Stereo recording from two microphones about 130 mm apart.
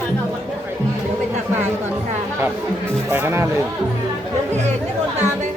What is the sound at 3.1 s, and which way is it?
Speech, 20° right (ahead or behind).